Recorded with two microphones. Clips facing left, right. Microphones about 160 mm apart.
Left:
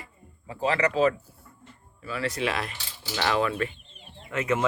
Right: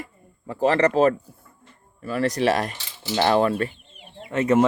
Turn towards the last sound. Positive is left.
turn(degrees=-35)  # may be behind; listen again after turning